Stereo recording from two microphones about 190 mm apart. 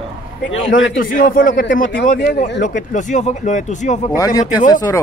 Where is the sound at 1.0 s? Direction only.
45° left (ahead or behind).